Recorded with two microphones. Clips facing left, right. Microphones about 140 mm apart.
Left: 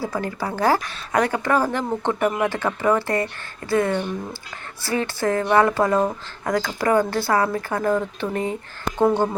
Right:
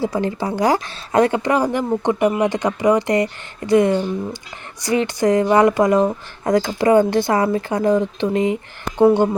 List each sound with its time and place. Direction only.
0.0 s speech: 20° right (ahead or behind)